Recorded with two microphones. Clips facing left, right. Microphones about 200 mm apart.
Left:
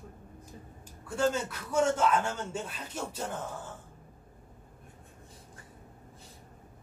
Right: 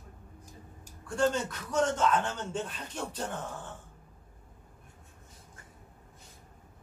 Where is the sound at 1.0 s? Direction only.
5° left (ahead or behind).